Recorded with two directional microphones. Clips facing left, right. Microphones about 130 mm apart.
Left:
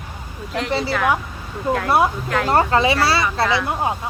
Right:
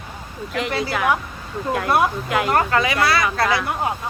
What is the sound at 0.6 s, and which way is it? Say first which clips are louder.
Speech: left 2 dB; 5° right (ahead or behind).